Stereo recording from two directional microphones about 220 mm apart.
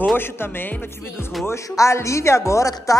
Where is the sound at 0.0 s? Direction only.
10° left (ahead or behind).